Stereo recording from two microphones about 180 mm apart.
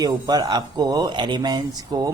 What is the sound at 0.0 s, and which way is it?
Speech, 20° right (ahead or behind).